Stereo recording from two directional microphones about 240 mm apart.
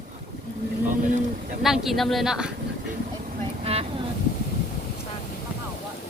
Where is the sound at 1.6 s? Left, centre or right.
Centre.